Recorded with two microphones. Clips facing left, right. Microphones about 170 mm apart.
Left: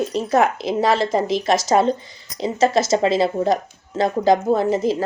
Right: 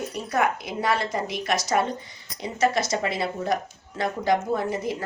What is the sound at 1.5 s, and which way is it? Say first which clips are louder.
Speech: left 7 dB; 90° left.